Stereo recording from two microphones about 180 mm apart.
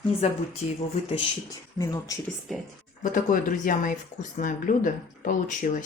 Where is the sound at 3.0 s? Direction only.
45° left (ahead or behind).